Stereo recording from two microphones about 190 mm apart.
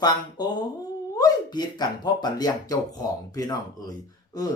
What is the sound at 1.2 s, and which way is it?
Speech, 20° left (ahead or behind).